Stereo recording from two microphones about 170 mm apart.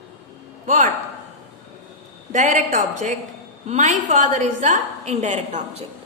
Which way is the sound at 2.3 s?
50° right (ahead or behind).